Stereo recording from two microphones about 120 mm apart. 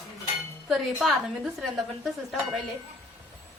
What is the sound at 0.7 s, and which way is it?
A woman's voice, 5° right (ahead or behind).